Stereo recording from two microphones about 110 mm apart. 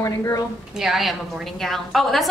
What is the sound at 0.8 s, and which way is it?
A woman's voice, centre (ahead or behind).